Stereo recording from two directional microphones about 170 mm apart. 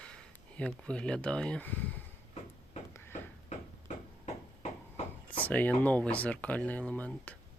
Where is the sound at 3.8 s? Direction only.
40° left (ahead or behind).